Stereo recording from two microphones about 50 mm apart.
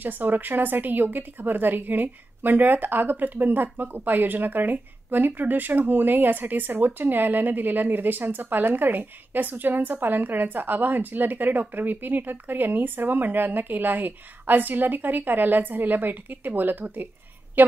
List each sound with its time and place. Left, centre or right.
0.0 s a woman's voice: right